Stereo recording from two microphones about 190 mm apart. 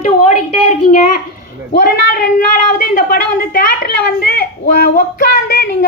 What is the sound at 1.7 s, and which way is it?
Speech, 50° left (ahead or behind).